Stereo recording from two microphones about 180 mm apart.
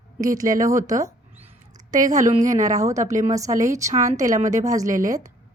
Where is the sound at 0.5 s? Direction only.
20° right (ahead or behind).